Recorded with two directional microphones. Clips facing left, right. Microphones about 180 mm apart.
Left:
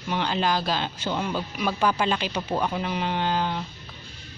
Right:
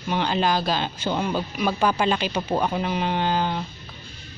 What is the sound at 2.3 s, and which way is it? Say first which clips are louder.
Speech: right 3 dB; 30° right (ahead or behind).